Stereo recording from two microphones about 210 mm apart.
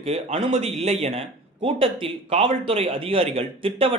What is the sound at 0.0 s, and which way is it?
A man's voice, 25° right (ahead or behind).